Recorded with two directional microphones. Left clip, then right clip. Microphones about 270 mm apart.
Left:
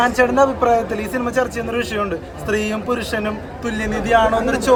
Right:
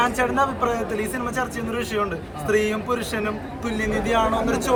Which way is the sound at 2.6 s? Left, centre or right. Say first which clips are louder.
Left 2 dB; left.